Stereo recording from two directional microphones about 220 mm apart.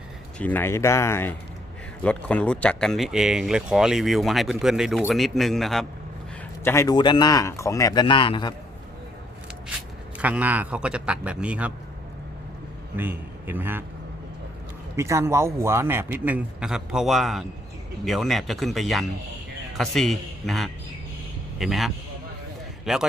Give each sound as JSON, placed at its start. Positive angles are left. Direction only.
{"t": 0.3, "sound": "speech", "side_deg": 10}
{"t": 6.7, "sound": "speech", "side_deg": 15}
{"t": 10.2, "sound": "speech", "side_deg": -5}
{"t": 13.0, "sound": "a man's voice", "side_deg": -10}
{"t": 14.9, "sound": "a man's voice", "side_deg": -10}